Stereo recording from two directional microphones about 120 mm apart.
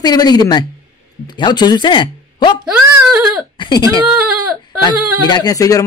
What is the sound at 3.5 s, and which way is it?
Speech, 35° left (ahead or behind).